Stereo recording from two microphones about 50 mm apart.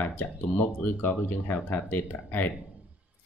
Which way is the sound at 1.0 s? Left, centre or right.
Left.